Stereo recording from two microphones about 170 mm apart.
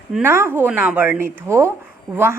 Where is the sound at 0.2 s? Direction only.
15° right (ahead or behind).